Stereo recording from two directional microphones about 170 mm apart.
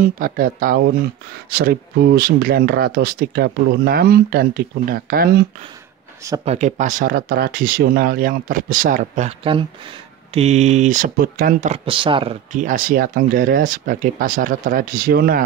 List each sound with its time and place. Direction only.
0.0 s speech: 55° right (ahead or behind)
6.4 s speech: 40° right (ahead or behind)
9.4 s speech: 30° right (ahead or behind); by 11.8 s 50° right (ahead or behind)
11.8 s speech: 30° right (ahead or behind)
12.5 s speech: 50° right (ahead or behind)